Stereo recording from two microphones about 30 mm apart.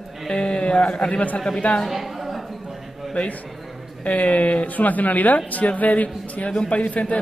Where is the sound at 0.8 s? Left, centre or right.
Left.